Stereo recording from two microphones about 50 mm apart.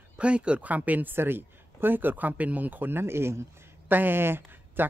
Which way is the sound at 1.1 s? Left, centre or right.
Right.